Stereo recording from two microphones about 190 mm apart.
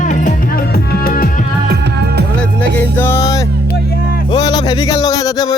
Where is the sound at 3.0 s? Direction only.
15° left (ahead or behind).